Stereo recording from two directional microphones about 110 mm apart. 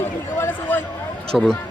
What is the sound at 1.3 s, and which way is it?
Speech, centre (ahead or behind).